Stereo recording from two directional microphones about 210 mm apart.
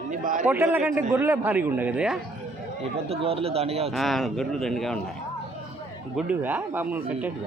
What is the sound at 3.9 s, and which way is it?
A man's voice, centre (ahead or behind).